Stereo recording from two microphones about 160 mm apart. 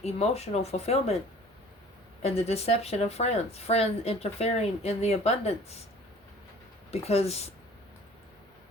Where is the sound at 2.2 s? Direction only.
40° left (ahead or behind).